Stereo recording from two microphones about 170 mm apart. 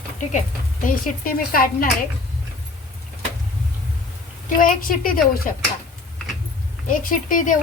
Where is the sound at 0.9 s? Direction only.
60° left (ahead or behind).